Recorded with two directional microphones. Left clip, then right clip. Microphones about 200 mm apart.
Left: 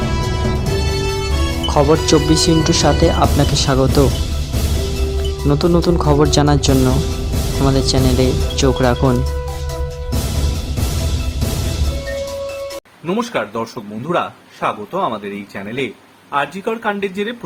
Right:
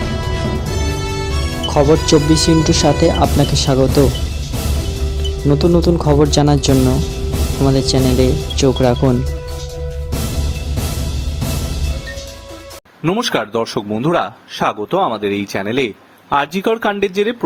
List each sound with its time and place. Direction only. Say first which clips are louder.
1.6 s speech: right 1 dB; centre (ahead or behind)
5.5 s speech: right 2 dB; centre (ahead or behind)
13.1 s speech: right 2 dB; 50° right (ahead or behind)